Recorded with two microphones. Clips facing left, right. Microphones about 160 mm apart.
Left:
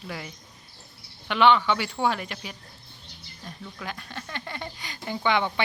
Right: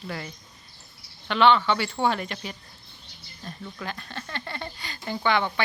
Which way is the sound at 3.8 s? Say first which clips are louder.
Right 1 dB; 10° left (ahead or behind).